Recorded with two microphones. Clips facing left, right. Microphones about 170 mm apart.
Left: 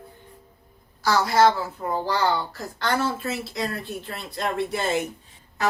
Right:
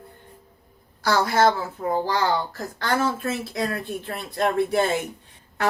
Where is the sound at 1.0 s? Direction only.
55° right (ahead or behind).